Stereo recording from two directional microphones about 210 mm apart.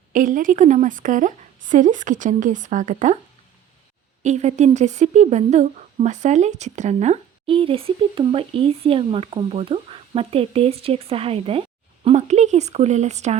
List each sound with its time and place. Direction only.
0.1 s a woman's voice: 40° right (ahead or behind)
4.2 s speech: 35° right (ahead or behind)